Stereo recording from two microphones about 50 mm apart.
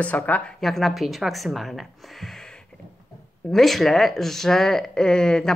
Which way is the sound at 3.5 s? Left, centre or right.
Centre.